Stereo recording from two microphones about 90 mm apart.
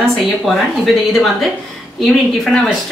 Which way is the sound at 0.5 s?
5° left (ahead or behind).